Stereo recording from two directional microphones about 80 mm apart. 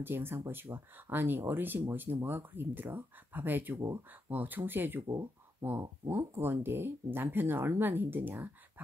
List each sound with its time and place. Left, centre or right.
0.0 s speech: right